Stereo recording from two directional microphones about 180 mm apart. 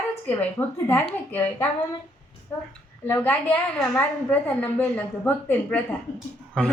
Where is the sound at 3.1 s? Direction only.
10° left (ahead or behind).